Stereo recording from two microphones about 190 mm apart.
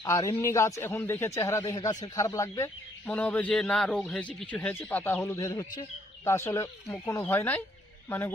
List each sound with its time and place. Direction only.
0.0 s a man's voice: 20° left (ahead or behind)